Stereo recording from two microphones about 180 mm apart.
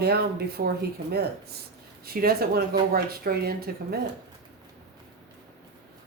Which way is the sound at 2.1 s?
55° right (ahead or behind).